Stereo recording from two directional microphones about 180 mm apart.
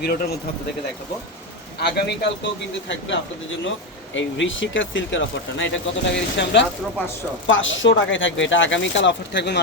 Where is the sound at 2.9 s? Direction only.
90° left.